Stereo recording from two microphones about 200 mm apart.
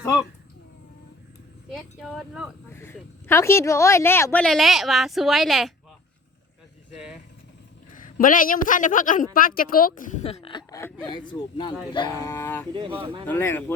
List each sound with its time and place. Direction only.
0.0 s speech: 15° left (ahead or behind)
1.7 s speech: centre (ahead or behind)
2.7 s speech: 10° left (ahead or behind)
7.9 s a woman's voice: 40° left (ahead or behind); by 13.7 s 10° left (ahead or behind)